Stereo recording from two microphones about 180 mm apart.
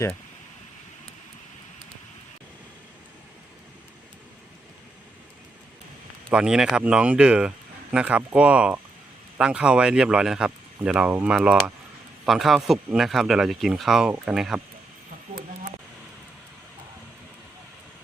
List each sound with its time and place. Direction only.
6.3 s speech: 5° right (ahead or behind)